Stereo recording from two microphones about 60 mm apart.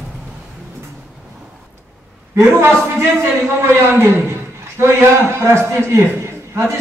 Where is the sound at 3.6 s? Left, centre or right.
Right.